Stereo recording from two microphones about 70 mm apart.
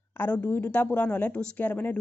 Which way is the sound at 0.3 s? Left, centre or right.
Left.